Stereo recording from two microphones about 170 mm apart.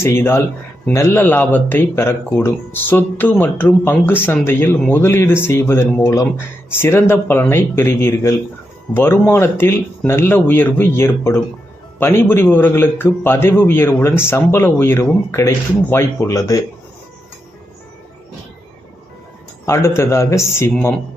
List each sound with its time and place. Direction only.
0.0 s speech: 15° left (ahead or behind)
19.6 s speech: 15° left (ahead or behind)